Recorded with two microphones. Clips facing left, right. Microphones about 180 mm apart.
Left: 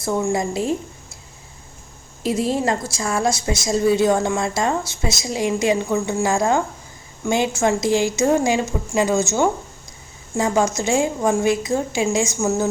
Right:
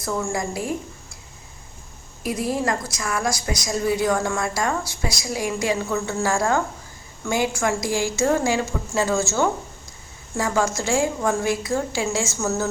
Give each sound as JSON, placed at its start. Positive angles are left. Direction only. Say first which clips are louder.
{"t": 0.0, "sound": "a woman's voice", "louder": "left 5 dB", "side_deg": 20}
{"t": 2.2, "sound": "a woman's voice", "louder": "left 4 dB", "side_deg": 25}